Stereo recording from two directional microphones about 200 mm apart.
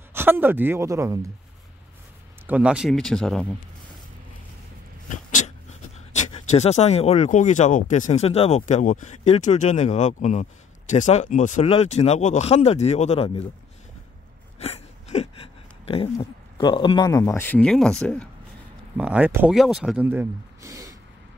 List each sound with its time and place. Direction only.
0.1 s speech: 10° right (ahead or behind)
2.4 s speech: 5° right (ahead or behind)
6.2 s speech: 35° left (ahead or behind)
14.6 s a sound: 30° left (ahead or behind)
15.8 s speech: 30° left (ahead or behind); by 18.3 s 5° left (ahead or behind)
18.9 s speech: 5° right (ahead or behind)